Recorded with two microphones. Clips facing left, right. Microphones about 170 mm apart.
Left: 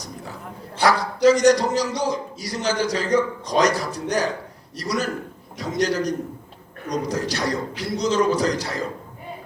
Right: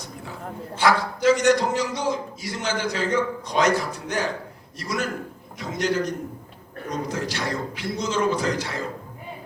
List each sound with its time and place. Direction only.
0.8 s a man's voice: 35° left (ahead or behind)